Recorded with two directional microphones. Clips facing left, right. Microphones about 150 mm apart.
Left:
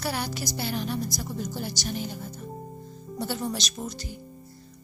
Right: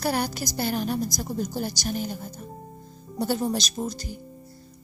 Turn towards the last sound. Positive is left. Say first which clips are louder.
# right 5 dB
turn(degrees=-40)  # may be behind; listen again after turning